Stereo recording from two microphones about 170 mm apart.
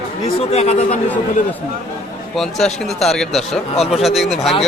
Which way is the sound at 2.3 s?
Centre (ahead or behind).